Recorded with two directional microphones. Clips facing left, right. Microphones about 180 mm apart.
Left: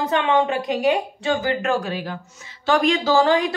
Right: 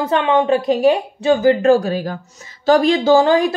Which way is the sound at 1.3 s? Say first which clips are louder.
Right 10 dB; 25° right (ahead or behind).